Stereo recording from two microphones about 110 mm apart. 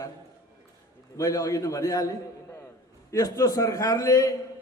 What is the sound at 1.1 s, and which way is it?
Speech, 30° left (ahead or behind).